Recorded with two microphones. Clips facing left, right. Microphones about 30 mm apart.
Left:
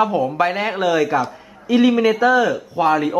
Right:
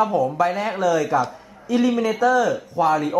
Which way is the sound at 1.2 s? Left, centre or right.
Left.